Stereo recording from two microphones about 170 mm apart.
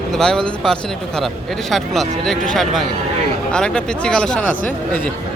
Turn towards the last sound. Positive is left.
turn(degrees=5)  # may be behind; listen again after turning